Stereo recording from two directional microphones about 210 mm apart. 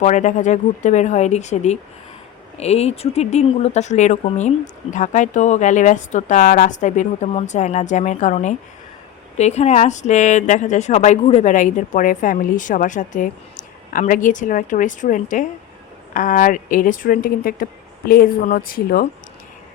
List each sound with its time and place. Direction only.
0.0 s a woman's voice: 35° left (ahead or behind)